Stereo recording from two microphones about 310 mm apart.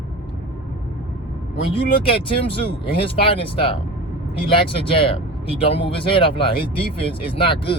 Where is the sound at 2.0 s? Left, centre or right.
Centre.